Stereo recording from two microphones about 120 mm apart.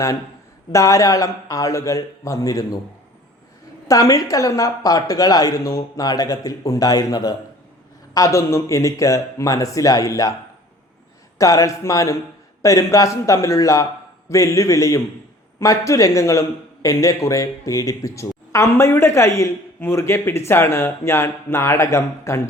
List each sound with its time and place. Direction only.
0.7 s a man's voice: 25° left (ahead or behind)
3.8 s a man's voice: 25° left (ahead or behind)
11.3 s a man's voice: 25° left (ahead or behind)